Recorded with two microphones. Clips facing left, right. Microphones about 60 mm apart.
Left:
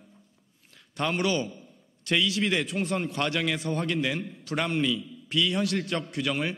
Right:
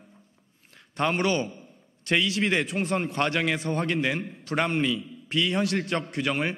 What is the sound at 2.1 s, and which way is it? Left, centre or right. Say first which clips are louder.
Speech: right 1 dB; right.